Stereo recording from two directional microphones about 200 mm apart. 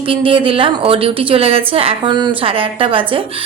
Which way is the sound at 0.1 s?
25° right (ahead or behind).